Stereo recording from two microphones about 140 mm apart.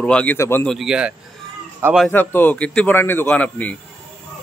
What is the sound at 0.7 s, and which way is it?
Speech, 5° right (ahead or behind).